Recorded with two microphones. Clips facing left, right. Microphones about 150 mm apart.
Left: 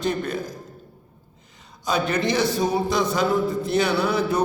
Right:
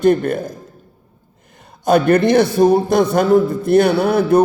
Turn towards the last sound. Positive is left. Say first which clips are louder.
# right 8 dB
turn(degrees=-55)  # may be behind; listen again after turning